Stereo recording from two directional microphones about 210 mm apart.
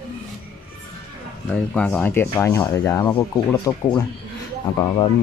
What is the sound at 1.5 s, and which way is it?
Speech, 5° left (ahead or behind).